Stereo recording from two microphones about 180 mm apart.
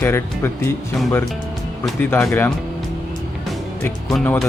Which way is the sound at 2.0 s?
10° left (ahead or behind).